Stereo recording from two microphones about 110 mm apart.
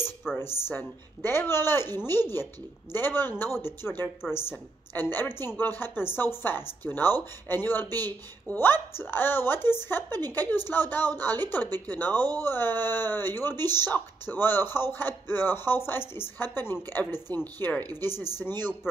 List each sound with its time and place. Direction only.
0.4 s speech: 20° left (ahead or behind)